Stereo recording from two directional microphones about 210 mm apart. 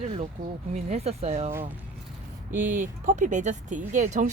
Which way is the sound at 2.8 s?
35° right (ahead or behind).